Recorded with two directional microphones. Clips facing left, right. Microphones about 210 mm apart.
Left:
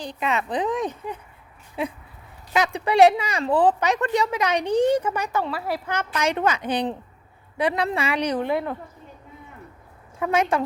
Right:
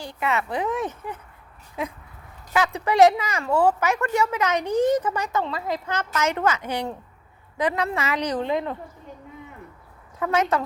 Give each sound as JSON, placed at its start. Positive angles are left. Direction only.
{"t": 0.0, "sound": "speech", "side_deg": 20}
{"t": 2.5, "sound": "speech", "side_deg": 15}
{"t": 5.5, "sound": "a woman's voice", "side_deg": -15}
{"t": 5.7, "sound": "speech", "side_deg": 10}
{"t": 8.4, "sound": "a woman's voice", "side_deg": -20}
{"t": 10.2, "sound": "a woman's voice", "side_deg": 15}